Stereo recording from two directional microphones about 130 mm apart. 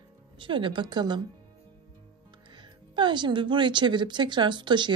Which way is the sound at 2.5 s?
35° right (ahead or behind).